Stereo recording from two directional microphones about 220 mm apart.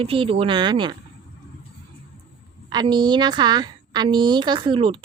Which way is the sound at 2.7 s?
20° right (ahead or behind).